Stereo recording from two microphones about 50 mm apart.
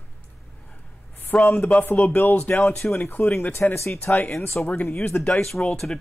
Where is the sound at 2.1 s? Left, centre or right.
Left.